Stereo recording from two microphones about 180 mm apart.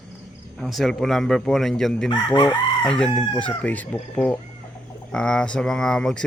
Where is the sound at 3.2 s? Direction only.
5° left (ahead or behind).